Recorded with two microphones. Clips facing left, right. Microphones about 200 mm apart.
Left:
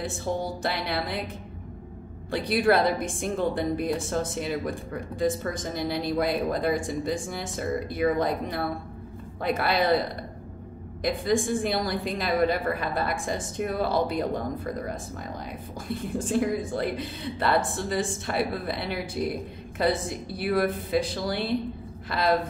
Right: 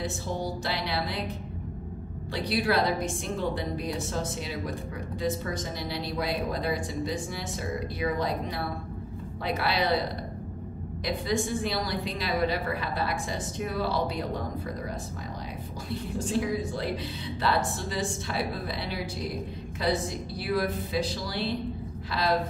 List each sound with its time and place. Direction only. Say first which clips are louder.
0.6 s a woman's voice: left 2 dB; 55° left (ahead or behind)
2.3 s a woman's voice: left 4 dB; 50° left (ahead or behind)
11.1 s a woman's voice: left 4 dB; 50° left (ahead or behind)
16.2 s a woman's voice: left 3 dB; 50° left (ahead or behind)